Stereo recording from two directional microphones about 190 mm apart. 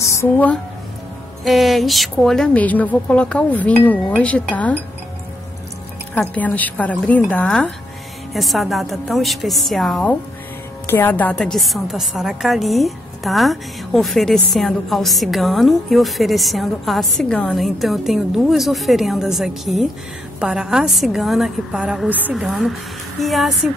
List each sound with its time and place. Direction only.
0.0 s a woman's voice: 15° left (ahead or behind)
1.4 s a woman's voice: centre (ahead or behind)
6.1 s a woman's voice: 10° left (ahead or behind)